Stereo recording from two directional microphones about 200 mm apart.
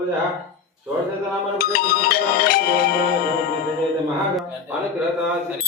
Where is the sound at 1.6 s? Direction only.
50° left (ahead or behind).